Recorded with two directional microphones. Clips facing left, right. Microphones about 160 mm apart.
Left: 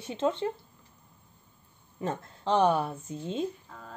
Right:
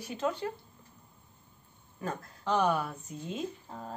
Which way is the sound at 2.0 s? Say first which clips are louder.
Left 4 dB; 25° left (ahead or behind).